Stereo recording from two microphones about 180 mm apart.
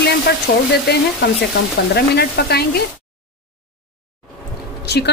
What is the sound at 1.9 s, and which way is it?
Frying, 65° left (ahead or behind).